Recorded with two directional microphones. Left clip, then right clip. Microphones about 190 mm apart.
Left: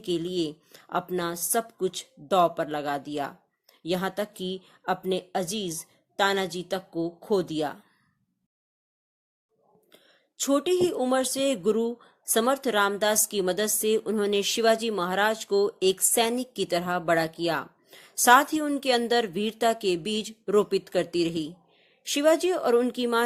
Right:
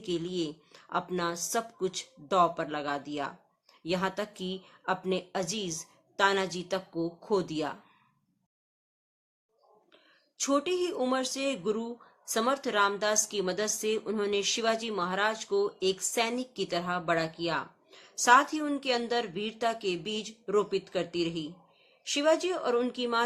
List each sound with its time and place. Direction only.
0.0 s speech: 30° left (ahead or behind)
9.9 s speech: 30° left (ahead or behind)